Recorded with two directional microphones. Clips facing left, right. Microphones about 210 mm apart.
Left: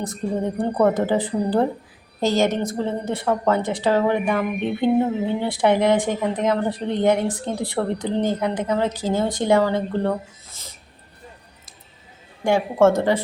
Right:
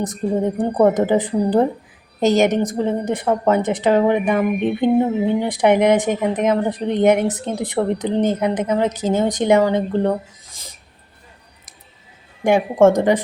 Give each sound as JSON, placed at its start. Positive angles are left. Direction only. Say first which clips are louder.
{"t": 0.0, "sound": "a woman's voice", "louder": "right 4 dB", "side_deg": -20}
{"t": 12.5, "sound": "speech", "louder": "right 3 dB", "side_deg": -20}